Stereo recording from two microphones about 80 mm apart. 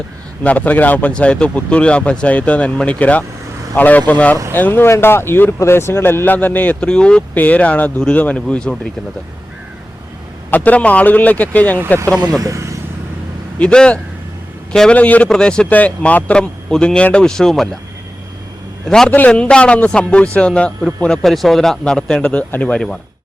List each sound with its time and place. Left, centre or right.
0.4 s speech: centre
10.5 s speech: centre
12.4 s a man's voice: right
13.6 s speech: centre
18.9 s speech: centre